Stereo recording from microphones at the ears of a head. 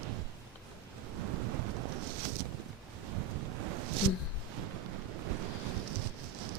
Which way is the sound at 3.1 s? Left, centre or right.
Right.